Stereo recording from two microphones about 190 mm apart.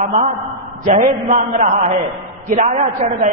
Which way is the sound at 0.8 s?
45° right (ahead or behind).